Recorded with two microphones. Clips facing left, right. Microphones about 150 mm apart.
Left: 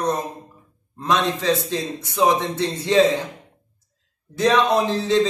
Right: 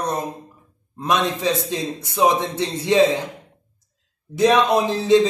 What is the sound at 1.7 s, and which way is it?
A man's voice, 15° right (ahead or behind).